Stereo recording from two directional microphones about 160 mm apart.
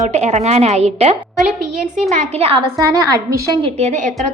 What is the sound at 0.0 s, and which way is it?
A woman's voice, 45° right (ahead or behind).